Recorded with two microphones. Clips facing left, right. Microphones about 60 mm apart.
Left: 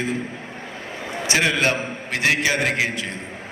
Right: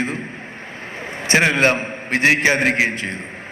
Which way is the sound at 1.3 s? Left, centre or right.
Right.